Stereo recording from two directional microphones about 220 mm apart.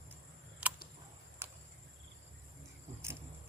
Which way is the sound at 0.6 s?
5° right (ahead or behind).